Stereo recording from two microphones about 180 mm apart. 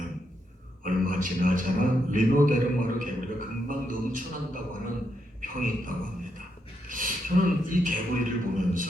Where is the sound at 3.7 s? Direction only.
50° right (ahead or behind).